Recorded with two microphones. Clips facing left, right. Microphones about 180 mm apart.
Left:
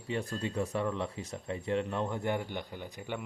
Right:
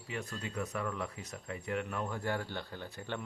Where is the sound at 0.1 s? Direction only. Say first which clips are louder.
Left 6 dB; 30° left (ahead or behind).